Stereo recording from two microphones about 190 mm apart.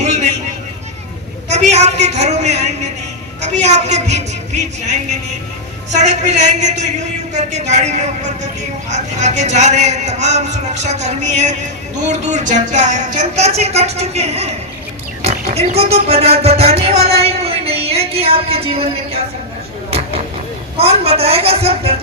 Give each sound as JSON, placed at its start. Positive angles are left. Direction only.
{"t": 0.0, "sound": "a sound", "side_deg": -40}
{"t": 1.5, "sound": "a woman's voice", "side_deg": -35}
{"t": 6.0, "sound": "speech", "side_deg": -40}
{"t": 20.7, "sound": "speech", "side_deg": -30}